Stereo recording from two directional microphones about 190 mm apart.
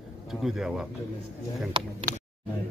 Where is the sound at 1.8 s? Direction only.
30° right (ahead or behind).